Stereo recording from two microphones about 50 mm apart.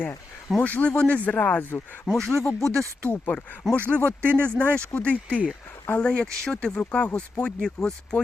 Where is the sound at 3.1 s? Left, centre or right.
Left.